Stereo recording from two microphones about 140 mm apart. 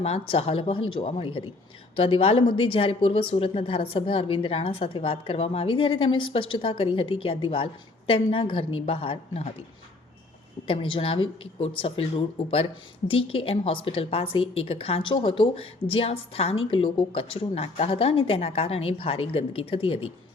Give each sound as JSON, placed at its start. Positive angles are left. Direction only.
{"t": 0.0, "sound": "speech", "side_deg": 45}
{"t": 10.7, "sound": "speech", "side_deg": 40}